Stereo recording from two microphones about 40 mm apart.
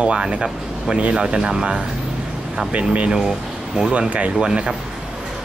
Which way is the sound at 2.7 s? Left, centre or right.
Right.